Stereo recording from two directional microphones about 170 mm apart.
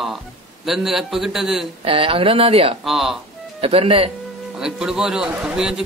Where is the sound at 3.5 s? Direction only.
35° right (ahead or behind).